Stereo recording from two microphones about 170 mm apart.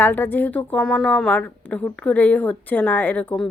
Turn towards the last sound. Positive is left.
turn(degrees=5)  # may be behind; listen again after turning